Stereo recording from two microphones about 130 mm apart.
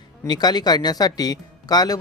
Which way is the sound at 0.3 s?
30° left (ahead or behind).